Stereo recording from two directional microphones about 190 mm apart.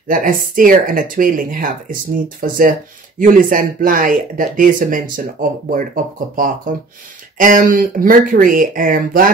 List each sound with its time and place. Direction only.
0.1 s speech: 45° right (ahead or behind)